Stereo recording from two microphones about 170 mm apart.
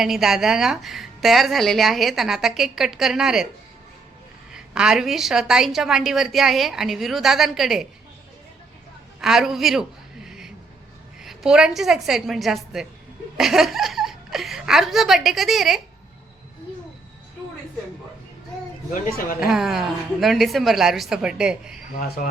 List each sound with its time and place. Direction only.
0.0 s a woman's voice: centre (ahead or behind)
4.5 s a woman's voice: 5° right (ahead or behind)
9.2 s a woman's voice: centre (ahead or behind)
10.2 s music: 5° right (ahead or behind)
11.2 s a woman's voice: 5° right (ahead or behind)
19.1 s a woman's voice: 55° left (ahead or behind)
19.5 s a woman's voice: centre (ahead or behind)
21.9 s cricket: 55° left (ahead or behind)